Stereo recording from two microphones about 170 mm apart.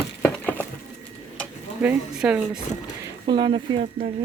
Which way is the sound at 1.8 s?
10° right (ahead or behind).